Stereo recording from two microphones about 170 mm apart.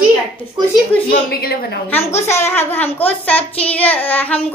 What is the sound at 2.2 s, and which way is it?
A woman's voice, 15° left (ahead or behind).